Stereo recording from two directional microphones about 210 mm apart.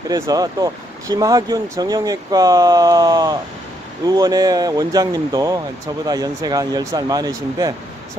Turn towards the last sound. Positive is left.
turn(degrees=-20)  # may be behind; listen again after turning